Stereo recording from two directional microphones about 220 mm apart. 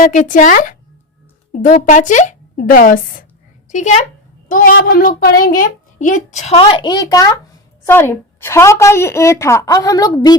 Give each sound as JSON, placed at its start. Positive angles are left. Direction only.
{"t": 0.0, "sound": "a child's voice", "side_deg": 35}